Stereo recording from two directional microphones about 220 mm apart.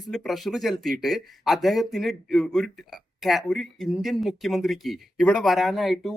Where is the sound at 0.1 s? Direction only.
Centre (ahead or behind).